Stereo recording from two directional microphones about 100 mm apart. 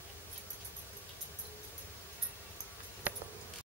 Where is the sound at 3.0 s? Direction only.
15° right (ahead or behind).